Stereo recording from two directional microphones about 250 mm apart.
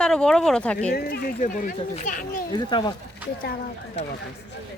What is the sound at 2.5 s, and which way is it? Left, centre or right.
Speech, centre.